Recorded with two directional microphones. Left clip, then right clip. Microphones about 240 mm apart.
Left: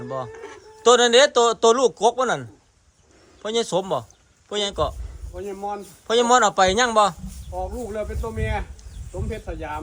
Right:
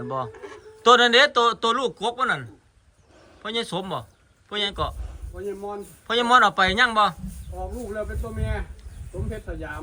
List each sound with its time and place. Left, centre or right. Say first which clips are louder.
0.0 s a man's voice: right 1 dB; centre
5.6 s speech: left 8 dB; left
6.1 s a man's voice: left 1 dB; centre
7.6 s speech: left 2 dB; left